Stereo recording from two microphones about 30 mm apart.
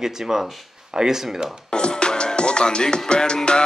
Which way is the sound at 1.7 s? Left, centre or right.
Left.